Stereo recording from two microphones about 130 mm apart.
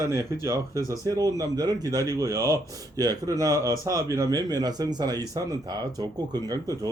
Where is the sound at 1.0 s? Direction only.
25° right (ahead or behind).